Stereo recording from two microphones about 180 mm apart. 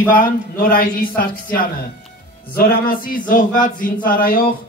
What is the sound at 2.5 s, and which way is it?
Speech, 55° left (ahead or behind).